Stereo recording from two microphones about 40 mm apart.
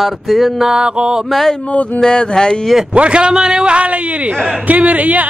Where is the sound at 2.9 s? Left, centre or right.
Right.